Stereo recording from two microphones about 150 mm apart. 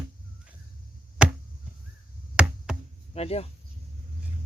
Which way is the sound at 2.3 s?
5° right (ahead or behind).